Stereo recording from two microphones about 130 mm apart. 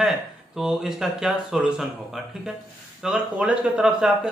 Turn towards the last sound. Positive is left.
turn(degrees=-5)  # may be behind; listen again after turning